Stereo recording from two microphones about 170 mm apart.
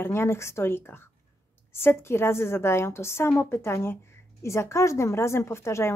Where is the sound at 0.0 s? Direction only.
15° left (ahead or behind).